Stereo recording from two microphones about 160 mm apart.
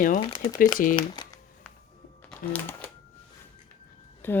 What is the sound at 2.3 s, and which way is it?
Speech, 10° left (ahead or behind).